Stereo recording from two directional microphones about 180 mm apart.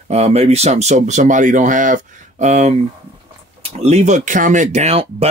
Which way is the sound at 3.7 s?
35° right (ahead or behind).